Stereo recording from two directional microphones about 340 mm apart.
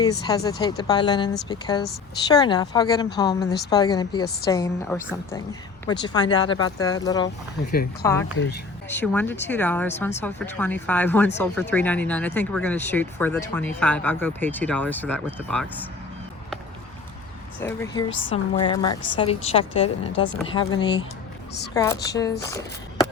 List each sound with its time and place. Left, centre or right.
0.0 s a woman's voice: centre
8.4 s speech: left
8.9 s speech: centre
17.6 s a woman's voice: centre